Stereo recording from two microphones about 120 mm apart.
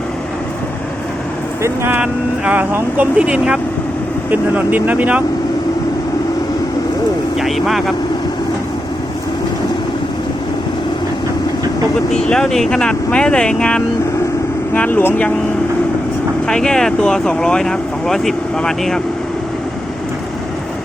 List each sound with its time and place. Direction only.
1.6 s speech: 20° right (ahead or behind)
2.0 s speech: 10° right (ahead or behind)
7.3 s speech: centre (ahead or behind)
12.1 s speech: 5° left (ahead or behind)
16.5 s speech: 5° left (ahead or behind)